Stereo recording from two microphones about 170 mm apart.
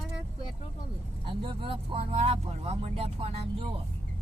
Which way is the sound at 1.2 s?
30° right (ahead or behind).